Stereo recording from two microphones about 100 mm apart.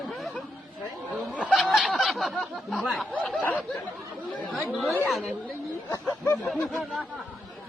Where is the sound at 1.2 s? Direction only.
10° right (ahead or behind).